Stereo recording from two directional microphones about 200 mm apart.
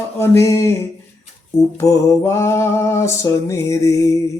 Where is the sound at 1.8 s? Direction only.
15° left (ahead or behind).